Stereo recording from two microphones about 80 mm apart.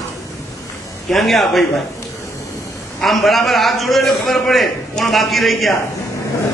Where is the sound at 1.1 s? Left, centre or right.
Centre.